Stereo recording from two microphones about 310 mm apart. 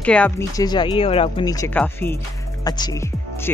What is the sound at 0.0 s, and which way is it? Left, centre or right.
Speech, centre.